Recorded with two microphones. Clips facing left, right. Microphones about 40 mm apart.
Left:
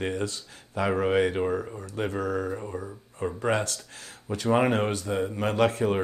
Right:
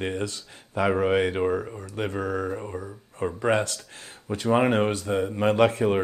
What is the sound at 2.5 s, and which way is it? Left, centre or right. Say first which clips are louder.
Mantra: right 1 dB; centre.